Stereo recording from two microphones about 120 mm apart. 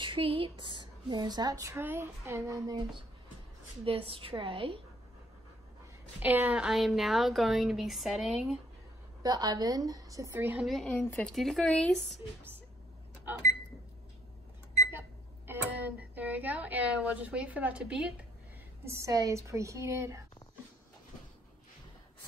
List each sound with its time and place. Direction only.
0.0 s a woman's voice: 45° right (ahead or behind); by 2.8 s 25° right (ahead or behind)
3.8 s a woman's voice: 50° right (ahead or behind)
6.1 s speech: 15° right (ahead or behind)
9.2 s a woman's voice: 30° right (ahead or behind)
10.3 s a woman's voice: 15° right (ahead or behind)
10.7 s speech: 5° left (ahead or behind)
14.9 s speech: 20° right (ahead or behind)
18.9 s a woman's voice: 25° right (ahead or behind)